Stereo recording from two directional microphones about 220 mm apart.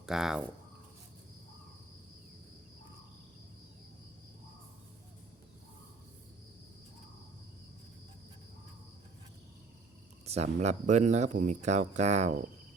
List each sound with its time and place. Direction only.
0.0 s speech: centre (ahead or behind)
10.2 s speech: 30° right (ahead or behind)